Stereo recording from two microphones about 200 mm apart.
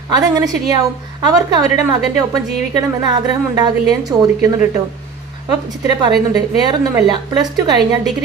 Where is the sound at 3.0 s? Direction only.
20° right (ahead or behind).